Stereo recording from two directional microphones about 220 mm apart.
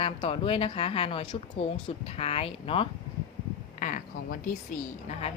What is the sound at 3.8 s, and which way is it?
Speech, 35° left (ahead or behind).